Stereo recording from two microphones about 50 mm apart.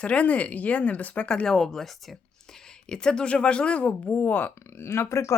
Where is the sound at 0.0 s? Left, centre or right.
Left.